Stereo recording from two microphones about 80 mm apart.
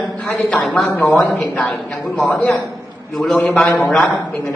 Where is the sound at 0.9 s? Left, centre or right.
Left.